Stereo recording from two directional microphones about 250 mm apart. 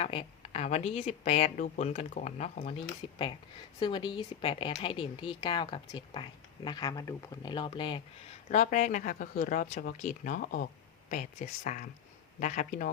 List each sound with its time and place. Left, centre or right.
0.0 s speech: left